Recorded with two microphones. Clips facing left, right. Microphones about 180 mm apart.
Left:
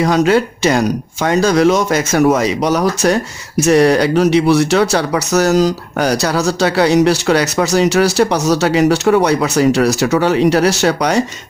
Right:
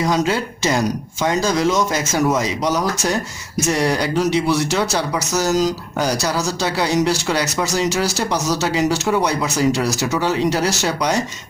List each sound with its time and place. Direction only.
0.0 s speech: 65° left (ahead or behind)